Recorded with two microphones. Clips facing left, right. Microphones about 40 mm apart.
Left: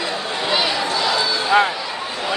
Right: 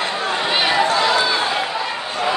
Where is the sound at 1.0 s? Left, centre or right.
Right.